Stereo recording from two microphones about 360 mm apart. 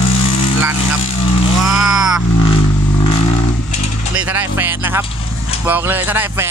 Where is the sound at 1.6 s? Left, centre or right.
Centre.